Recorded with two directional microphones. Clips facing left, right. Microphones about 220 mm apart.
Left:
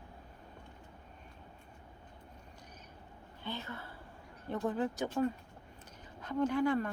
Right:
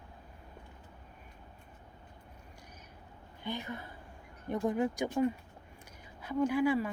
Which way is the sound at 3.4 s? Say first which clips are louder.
Right 3 dB; 15° right (ahead or behind).